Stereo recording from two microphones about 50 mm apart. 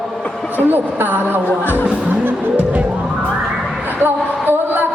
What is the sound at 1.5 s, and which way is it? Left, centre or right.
Speech, left.